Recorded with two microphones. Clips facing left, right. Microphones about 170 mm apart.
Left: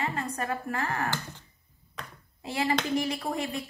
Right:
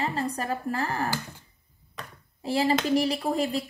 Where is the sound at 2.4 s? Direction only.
30° right (ahead or behind).